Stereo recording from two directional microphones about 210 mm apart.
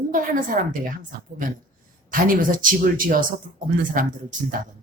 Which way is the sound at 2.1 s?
40° right (ahead or behind).